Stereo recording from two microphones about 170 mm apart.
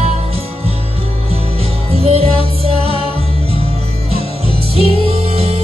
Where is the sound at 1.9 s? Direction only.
35° right (ahead or behind).